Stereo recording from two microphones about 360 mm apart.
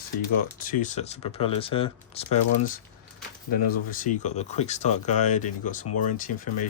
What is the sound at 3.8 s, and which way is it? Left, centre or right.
Speech, left.